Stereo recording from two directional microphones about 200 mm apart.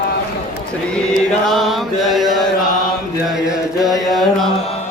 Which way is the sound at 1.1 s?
Centre (ahead or behind).